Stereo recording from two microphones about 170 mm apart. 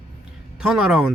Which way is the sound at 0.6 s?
5° right (ahead or behind).